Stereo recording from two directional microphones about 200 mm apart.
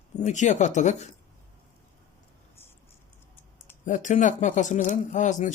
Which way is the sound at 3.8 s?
40° left (ahead or behind).